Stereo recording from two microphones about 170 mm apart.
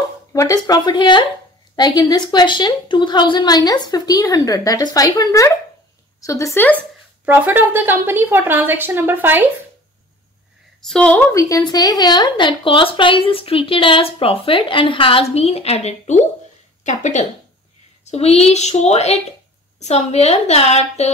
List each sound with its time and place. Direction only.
0.3 s a woman's voice: 20° left (ahead or behind)
7.2 s a woman's voice: 10° right (ahead or behind)
10.8 s a woman's voice: 5° left (ahead or behind)
11.3 s a woman's voice: 20° left (ahead or behind); by 21.1 s 40° left (ahead or behind)